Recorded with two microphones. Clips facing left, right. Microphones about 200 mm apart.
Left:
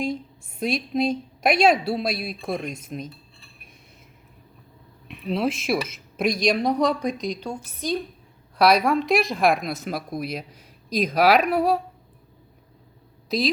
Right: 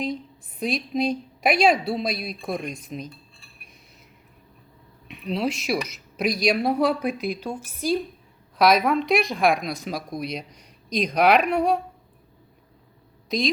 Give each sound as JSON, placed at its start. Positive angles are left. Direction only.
{"t": 0.6, "sound": "a woman's voice", "side_deg": 0}
{"t": 5.0, "sound": "a woman's voice", "side_deg": 0}